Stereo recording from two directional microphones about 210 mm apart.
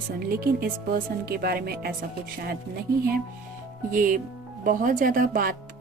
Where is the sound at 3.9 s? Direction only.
40° right (ahead or behind).